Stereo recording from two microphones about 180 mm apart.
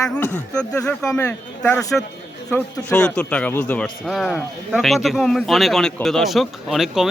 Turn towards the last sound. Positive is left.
turn(degrees=0)  # may be behind; listen again after turning